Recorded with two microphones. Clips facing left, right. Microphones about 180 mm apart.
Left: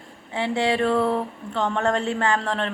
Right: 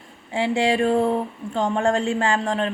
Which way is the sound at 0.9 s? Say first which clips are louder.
Right 2 dB; 25° right (ahead or behind).